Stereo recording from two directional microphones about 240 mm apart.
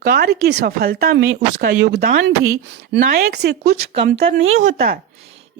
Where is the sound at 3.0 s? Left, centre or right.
Right.